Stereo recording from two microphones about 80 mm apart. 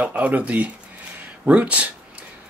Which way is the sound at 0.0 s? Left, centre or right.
Centre.